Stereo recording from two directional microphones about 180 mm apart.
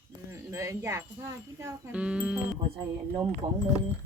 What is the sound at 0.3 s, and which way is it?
Wind chime, 15° right (ahead or behind).